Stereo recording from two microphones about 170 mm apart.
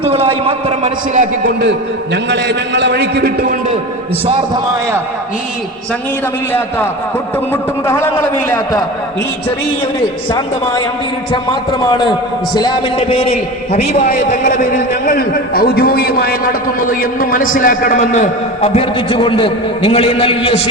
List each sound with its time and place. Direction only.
0.0 s a man's voice: 35° right (ahead or behind)
2.3 s a man's voice: 90° right
7.5 s a man's voice: 15° left (ahead or behind)
11.8 s a man's voice: 25° left (ahead or behind)